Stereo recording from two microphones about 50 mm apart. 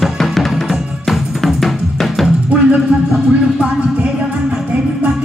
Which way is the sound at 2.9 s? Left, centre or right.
Centre.